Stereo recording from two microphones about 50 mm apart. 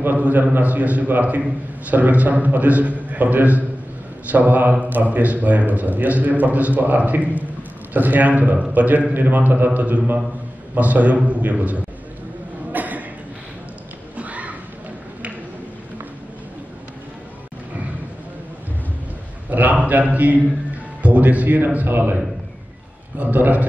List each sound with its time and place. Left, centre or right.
0.2 s a man's voice: right
12.7 s chuckle: right
14.1 s a sound: right
19.5 s a man's voice: right